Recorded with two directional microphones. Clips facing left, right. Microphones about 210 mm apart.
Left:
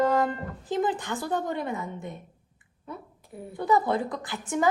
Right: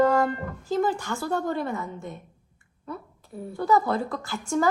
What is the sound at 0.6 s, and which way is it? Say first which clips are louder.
Speech: right 2 dB; 20° left (ahead or behind).